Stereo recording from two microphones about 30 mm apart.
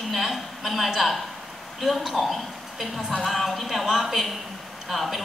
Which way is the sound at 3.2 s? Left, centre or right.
Centre.